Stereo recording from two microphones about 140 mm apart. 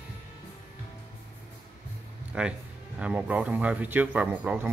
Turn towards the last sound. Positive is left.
turn(degrees=-10)  # may be behind; listen again after turning